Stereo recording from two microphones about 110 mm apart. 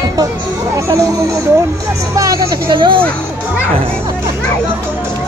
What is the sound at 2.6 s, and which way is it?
Speech, 50° right (ahead or behind).